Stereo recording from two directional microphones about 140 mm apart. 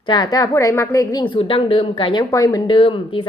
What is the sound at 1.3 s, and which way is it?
Speech, 40° left (ahead or behind).